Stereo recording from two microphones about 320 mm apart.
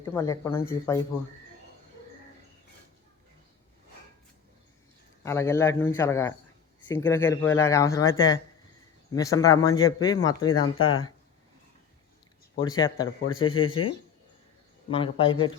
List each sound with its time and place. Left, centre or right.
0.0 s speech: centre
5.2 s speech: centre
10.8 s speech: left
12.5 s speech: centre
14.8 s speech: centre